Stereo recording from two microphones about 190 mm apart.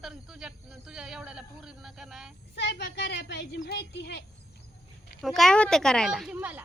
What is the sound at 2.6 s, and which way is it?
A woman's voice, 65° left (ahead or behind).